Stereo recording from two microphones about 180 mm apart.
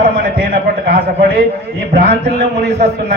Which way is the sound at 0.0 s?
55° right (ahead or behind).